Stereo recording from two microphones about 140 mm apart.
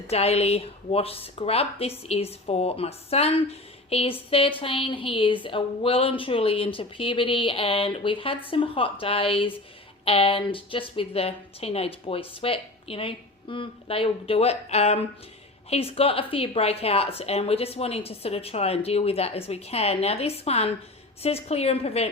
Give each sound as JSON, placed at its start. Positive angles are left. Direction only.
{"t": 0.1, "sound": "a woman's voice", "side_deg": 45}